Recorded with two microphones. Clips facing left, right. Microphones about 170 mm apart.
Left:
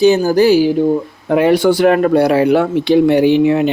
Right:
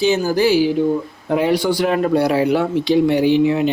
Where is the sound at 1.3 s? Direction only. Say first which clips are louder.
Left 6 dB; 65° left (ahead or behind).